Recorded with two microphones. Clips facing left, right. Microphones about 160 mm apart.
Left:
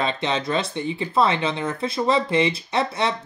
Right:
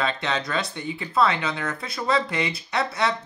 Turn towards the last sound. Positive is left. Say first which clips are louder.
# left 2 dB
turn(degrees=25)  # may be behind; listen again after turning